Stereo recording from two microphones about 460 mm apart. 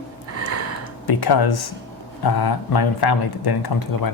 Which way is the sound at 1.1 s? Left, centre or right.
Left.